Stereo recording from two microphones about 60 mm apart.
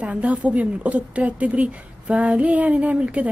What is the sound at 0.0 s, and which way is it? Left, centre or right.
A woman's voice, right.